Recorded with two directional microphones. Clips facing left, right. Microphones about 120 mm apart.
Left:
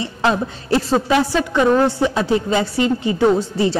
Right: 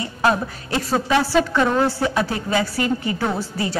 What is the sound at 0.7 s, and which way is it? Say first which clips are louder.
A woman's voice: left 5 dB; 30° left (ahead or behind).